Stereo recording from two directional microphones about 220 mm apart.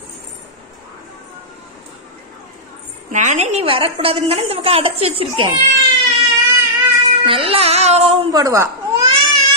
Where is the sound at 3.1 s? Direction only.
35° right (ahead or behind).